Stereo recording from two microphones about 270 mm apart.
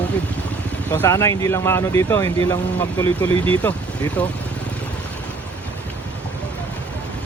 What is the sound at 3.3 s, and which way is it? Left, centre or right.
Speech, centre.